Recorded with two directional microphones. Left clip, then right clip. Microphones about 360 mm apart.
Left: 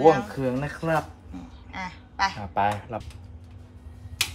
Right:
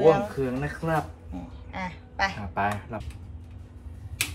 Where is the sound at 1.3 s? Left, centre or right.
Centre.